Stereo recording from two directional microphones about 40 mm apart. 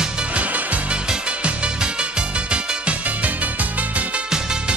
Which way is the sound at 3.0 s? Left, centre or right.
Right.